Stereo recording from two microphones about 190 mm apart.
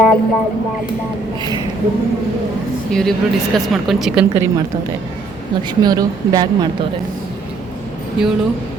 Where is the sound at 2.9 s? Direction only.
5° left (ahead or behind).